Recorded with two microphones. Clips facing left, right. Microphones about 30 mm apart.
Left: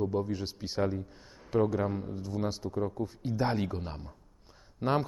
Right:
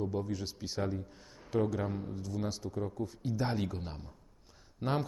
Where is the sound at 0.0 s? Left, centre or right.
Centre.